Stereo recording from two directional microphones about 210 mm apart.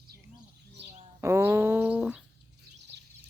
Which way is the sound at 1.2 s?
15° right (ahead or behind).